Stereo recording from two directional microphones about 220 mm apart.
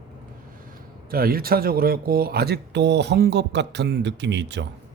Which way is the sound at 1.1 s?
40° right (ahead or behind).